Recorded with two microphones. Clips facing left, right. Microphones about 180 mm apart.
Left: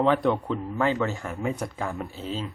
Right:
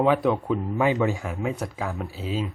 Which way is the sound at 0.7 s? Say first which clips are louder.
Right 2 dB; 15° right (ahead or behind).